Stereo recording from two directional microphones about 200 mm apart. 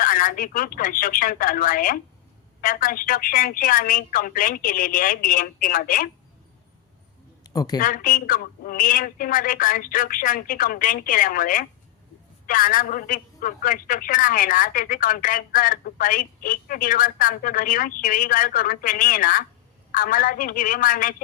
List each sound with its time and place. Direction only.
0.0 s a man's voice: 45° left (ahead or behind)
7.4 s a sound: 20° left (ahead or behind)
7.8 s a man's voice: 45° left (ahead or behind)